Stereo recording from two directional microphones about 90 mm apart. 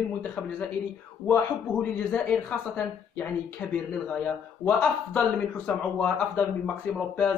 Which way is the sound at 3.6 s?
15° left (ahead or behind).